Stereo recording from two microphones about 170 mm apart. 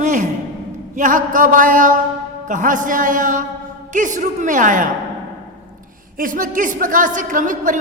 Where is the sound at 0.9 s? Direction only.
50° right (ahead or behind).